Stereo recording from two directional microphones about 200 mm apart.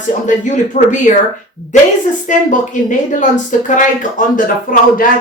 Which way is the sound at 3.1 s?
40° left (ahead or behind).